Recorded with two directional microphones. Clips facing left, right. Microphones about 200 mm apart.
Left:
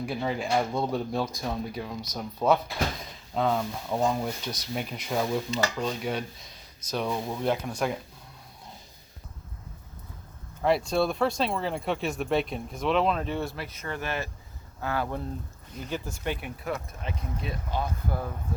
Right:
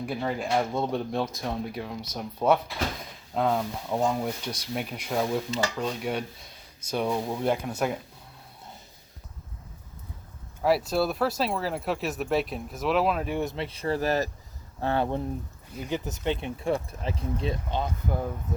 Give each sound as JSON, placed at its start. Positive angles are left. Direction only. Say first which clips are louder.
{"t": 0.0, "sound": "speech", "louder": "even", "side_deg": 0}
{"t": 10.6, "sound": "speech", "louder": "even", "side_deg": -5}